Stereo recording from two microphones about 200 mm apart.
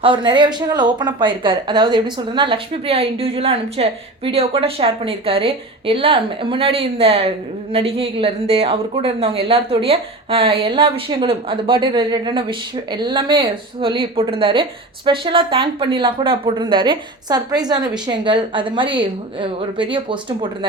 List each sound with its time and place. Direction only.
0.0 s a woman's voice: 25° right (ahead or behind)